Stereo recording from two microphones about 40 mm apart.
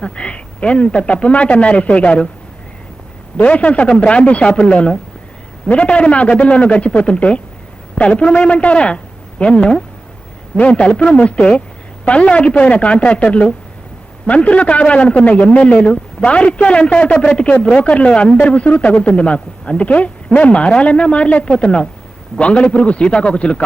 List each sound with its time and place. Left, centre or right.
0.0 s speech: left
3.3 s a man's voice: left